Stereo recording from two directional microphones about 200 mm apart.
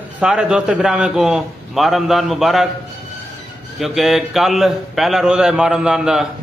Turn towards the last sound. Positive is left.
turn(degrees=-5)  # may be behind; listen again after turning